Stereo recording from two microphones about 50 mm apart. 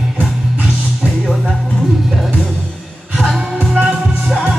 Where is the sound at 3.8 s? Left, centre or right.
Centre.